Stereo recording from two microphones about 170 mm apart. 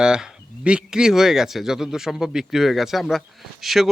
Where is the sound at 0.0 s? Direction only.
5° right (ahead or behind).